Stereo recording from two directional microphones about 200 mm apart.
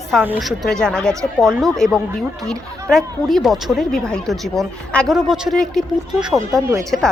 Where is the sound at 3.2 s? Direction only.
Centre (ahead or behind).